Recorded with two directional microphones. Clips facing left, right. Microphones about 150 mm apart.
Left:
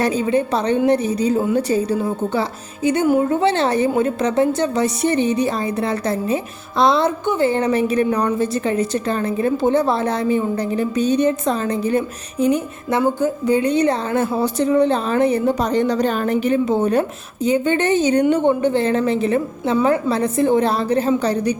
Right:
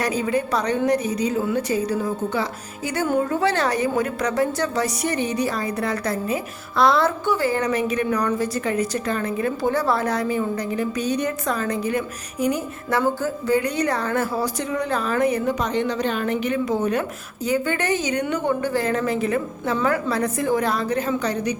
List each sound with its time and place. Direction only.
0.0 s a woman's voice: 25° left (ahead or behind)